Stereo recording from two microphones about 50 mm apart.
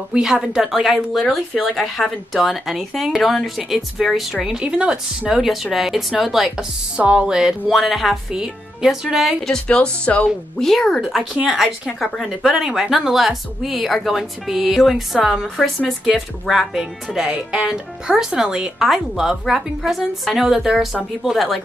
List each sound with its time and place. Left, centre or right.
0.1 s speech: centre
5.3 s speech: centre
7.0 s speech: right
7.7 s speech: centre
9.5 s speech: centre
10.6 s speech: centre
11.4 s speech: centre